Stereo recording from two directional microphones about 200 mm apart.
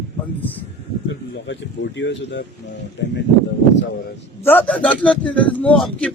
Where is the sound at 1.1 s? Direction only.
65° left (ahead or behind).